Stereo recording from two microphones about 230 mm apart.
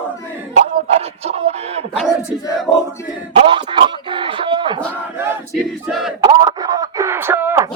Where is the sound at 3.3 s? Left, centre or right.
Right.